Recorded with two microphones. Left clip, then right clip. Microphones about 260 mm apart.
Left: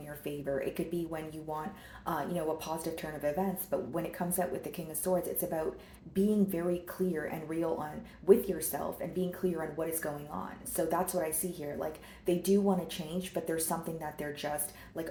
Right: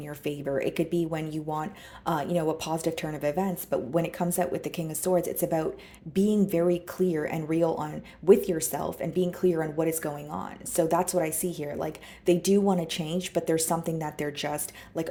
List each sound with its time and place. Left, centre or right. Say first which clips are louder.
0.1 s speech: right 5 dB; right